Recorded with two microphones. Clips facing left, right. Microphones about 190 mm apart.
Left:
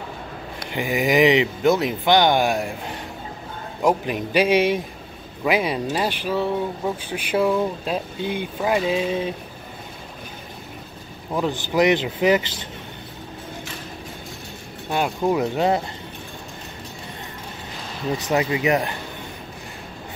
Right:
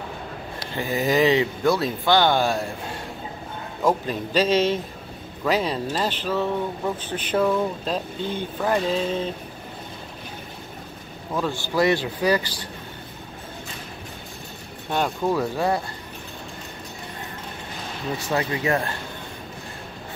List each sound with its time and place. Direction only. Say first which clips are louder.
0.7 s speech: left 2 dB; 15° left (ahead or behind)
3.8 s speech: left 2 dB; 15° left (ahead or behind)
11.3 s speech: left 3 dB; 15° left (ahead or behind)
14.9 s speech: left 2 dB; 10° left (ahead or behind)
18.2 s speech: left 3 dB; 15° left (ahead or behind)